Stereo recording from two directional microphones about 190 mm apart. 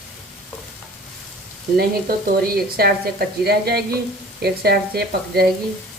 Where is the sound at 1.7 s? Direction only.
50° right (ahead or behind).